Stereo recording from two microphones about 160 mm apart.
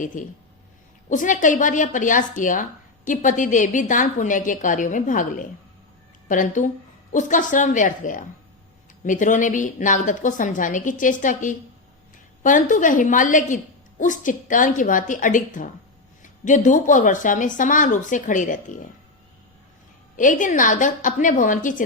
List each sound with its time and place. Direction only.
0.0 s a woman's voice: 55° left (ahead or behind)
20.1 s a woman's voice: 55° left (ahead or behind)